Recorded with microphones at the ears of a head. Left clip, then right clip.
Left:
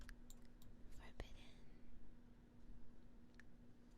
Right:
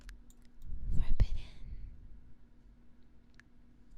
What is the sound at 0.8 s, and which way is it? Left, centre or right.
Whispering, right.